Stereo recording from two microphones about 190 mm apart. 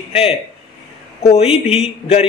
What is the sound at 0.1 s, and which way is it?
A man's voice, 30° left (ahead or behind).